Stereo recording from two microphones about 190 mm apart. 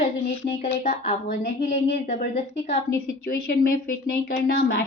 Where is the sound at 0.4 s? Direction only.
30° left (ahead or behind).